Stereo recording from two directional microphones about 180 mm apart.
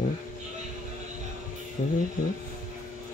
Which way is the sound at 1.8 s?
45° left (ahead or behind).